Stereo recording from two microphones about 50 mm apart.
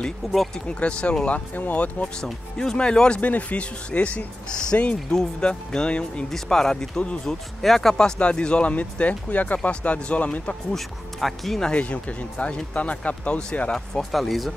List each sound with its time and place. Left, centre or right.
0.2 s speech: centre
0.7 s speech: left
2.5 s speech: centre
3.2 s speech: left
4.5 s speech: centre
8.2 s speech: left
9.6 s speech: left
10.7 s speech: centre
11.7 s speech: left
13.9 s speech: centre